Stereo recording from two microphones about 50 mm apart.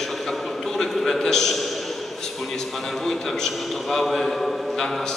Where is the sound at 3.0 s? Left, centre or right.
Centre.